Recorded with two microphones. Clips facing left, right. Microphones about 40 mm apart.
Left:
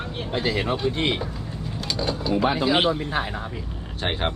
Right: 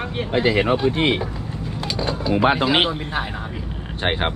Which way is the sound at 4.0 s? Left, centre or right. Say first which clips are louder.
Right 4 dB; right.